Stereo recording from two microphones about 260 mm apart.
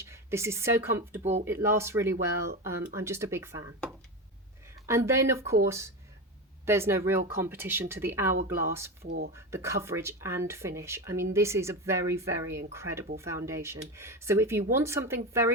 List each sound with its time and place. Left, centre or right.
0.0 s speech: centre
1.2 s speech: right
1.5 s speech: centre
4.9 s speech: centre
9.0 s speech: right
9.3 s speech: centre